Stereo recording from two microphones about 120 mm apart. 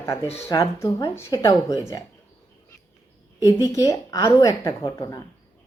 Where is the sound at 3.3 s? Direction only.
25° left (ahead or behind).